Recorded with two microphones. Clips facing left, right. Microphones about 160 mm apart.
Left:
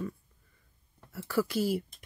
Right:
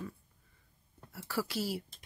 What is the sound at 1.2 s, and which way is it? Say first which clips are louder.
Speech: left 6 dB; 50° left (ahead or behind).